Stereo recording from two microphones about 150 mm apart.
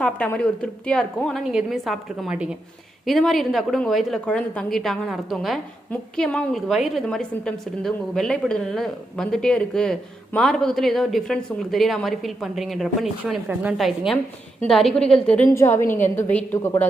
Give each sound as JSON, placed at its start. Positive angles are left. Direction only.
{"t": 0.0, "sound": "a woman's voice", "side_deg": 10}
{"t": 15.4, "sound": "a woman's voice", "side_deg": 15}